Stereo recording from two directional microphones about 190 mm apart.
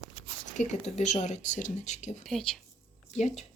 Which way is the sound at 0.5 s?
35° left (ahead or behind).